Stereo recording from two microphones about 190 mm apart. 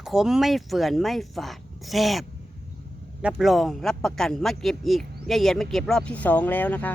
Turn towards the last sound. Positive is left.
turn(degrees=10)  # may be behind; listen again after turning